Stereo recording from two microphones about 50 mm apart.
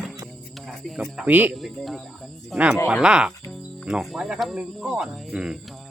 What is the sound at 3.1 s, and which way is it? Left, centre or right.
Speech, centre.